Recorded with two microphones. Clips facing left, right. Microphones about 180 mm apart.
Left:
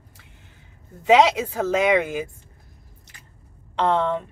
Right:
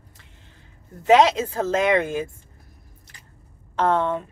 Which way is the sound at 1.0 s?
15° left (ahead or behind).